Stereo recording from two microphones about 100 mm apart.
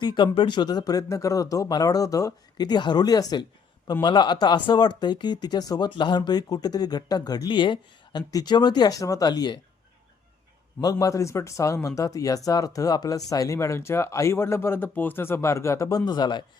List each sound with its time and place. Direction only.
0.0 s speech: 50° left (ahead or behind)
11.0 s speech: 30° left (ahead or behind); by 16.5 s 50° left (ahead or behind)